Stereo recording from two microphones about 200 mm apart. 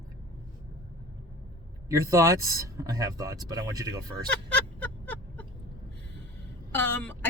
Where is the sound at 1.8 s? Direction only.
15° right (ahead or behind).